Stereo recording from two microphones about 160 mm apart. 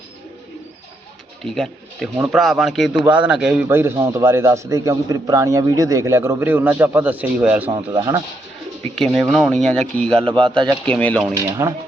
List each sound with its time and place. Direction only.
1.5 s a man's voice: centre (ahead or behind); by 8.2 s 20° right (ahead or behind)
9.0 s speech: centre (ahead or behind)
10.4 s speech: 30° right (ahead or behind)
10.8 s speech: 10° left (ahead or behind)
11.3 s speech: 20° right (ahead or behind)